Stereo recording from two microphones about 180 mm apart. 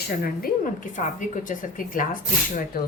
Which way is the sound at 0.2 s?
50° left (ahead or behind).